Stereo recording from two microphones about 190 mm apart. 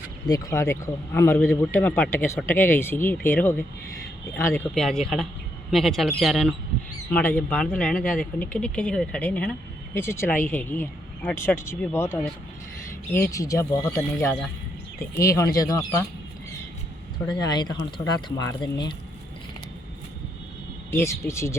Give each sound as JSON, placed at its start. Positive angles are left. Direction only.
{"t": 0.3, "sound": "speech", "side_deg": 15}
{"t": 4.7, "sound": "speech", "side_deg": 0}
{"t": 17.2, "sound": "speech", "side_deg": 20}
{"t": 20.9, "sound": "speech", "side_deg": 15}